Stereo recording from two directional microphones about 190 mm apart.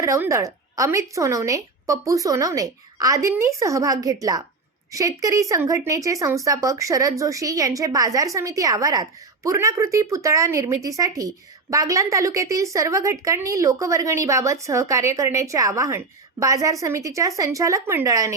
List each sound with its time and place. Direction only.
0.0 s a woman's voice: 15° right (ahead or behind)